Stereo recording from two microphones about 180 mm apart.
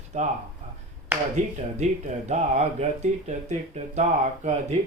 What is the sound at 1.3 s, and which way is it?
Speech, 40° right (ahead or behind).